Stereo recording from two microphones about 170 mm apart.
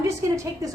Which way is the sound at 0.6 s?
20° right (ahead or behind).